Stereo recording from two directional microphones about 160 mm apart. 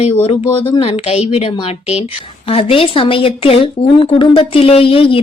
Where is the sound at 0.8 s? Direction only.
40° left (ahead or behind).